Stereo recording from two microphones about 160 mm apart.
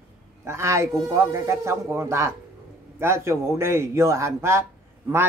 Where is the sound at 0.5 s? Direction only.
15° right (ahead or behind).